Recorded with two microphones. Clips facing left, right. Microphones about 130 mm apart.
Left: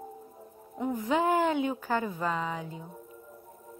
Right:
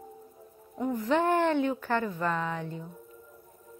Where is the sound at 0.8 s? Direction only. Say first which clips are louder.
Right 1 dB; 10° left (ahead or behind).